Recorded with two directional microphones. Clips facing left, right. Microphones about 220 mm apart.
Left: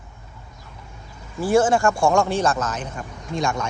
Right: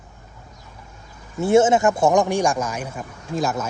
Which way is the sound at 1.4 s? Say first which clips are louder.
Right 2 dB; 25° right (ahead or behind).